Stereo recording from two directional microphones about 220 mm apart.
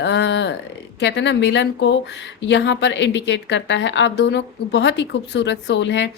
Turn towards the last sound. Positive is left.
turn(degrees=55)  # may be behind; listen again after turning